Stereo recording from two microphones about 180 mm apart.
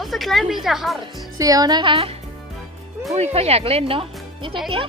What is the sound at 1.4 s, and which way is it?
Speech, 20° right (ahead or behind).